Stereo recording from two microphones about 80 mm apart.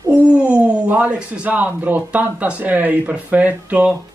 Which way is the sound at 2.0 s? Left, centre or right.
Centre.